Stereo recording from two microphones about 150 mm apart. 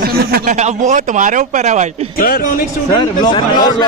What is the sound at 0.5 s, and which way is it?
Speech, 50° right (ahead or behind).